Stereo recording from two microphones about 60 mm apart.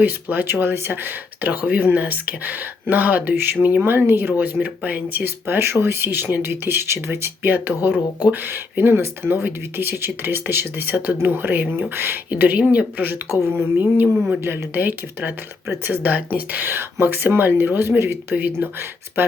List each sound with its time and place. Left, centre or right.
0.0 s speech: right
4.6 s speech: right
12.3 s speech: right
13.7 s speech: right